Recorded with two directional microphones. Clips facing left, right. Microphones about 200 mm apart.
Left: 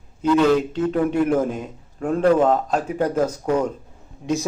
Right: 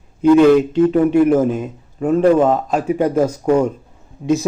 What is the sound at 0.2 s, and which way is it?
Speech, 15° right (ahead or behind).